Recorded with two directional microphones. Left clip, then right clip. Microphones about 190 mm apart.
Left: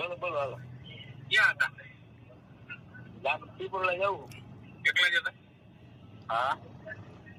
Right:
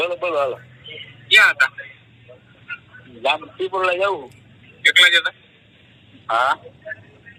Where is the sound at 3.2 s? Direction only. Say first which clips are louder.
Right 12 dB; 40° right (ahead or behind).